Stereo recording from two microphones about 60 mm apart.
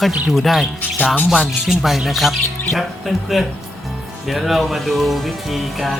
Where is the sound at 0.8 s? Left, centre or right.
Left.